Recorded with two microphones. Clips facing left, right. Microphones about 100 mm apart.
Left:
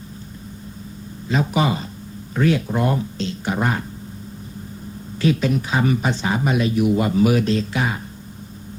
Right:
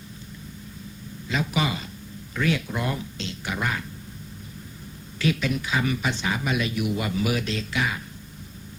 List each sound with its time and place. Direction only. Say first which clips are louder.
1.3 s speech: left 6 dB; 35° left (ahead or behind)
5.1 s speech: left 6 dB; 35° left (ahead or behind)